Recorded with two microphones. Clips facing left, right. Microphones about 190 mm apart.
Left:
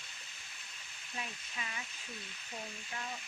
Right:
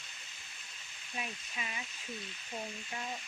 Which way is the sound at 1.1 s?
20° right (ahead or behind).